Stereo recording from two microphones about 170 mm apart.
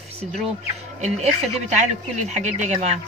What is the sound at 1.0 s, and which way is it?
Speech, 45° right (ahead or behind).